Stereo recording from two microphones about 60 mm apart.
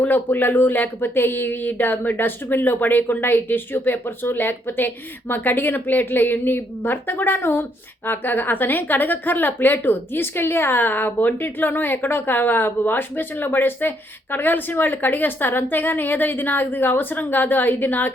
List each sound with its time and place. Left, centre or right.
0.0 s a woman's voice: left